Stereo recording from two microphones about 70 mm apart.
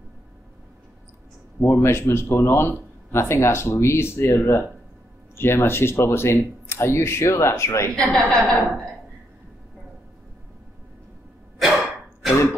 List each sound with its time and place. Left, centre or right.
1.6 s speech: left
7.9 s a woman's voice: centre
11.5 s throat clearing: centre